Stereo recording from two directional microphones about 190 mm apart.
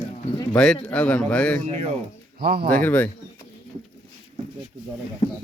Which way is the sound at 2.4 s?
55° right (ahead or behind).